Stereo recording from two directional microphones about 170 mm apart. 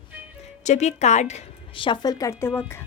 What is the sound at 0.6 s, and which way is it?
Speech, 40° left (ahead or behind).